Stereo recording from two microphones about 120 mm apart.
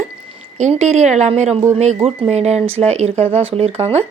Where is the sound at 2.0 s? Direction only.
60° right (ahead or behind).